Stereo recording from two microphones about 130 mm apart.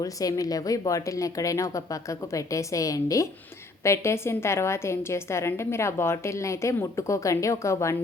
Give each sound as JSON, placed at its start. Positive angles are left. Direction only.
{"t": 0.0, "sound": "a woman's voice", "side_deg": 25}